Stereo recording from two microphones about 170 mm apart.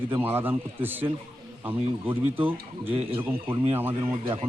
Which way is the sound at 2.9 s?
30° right (ahead or behind).